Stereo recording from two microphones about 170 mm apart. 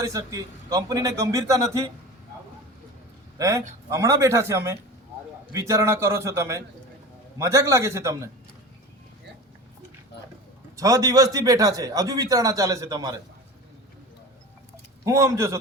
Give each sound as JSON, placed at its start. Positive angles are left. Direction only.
{"t": 0.0, "sound": "a man's voice", "side_deg": -20}
{"t": 3.3, "sound": "a man's voice", "side_deg": -15}
{"t": 10.1, "sound": "a sound", "side_deg": 90}
{"t": 10.8, "sound": "a man's voice", "side_deg": -20}
{"t": 15.0, "sound": "a man's voice", "side_deg": -15}